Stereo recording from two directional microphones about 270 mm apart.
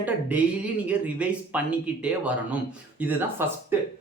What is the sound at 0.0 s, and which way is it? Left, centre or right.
Speech, centre.